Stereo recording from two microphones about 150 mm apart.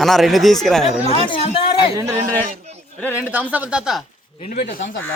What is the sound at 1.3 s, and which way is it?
Speech, 40° left (ahead or behind).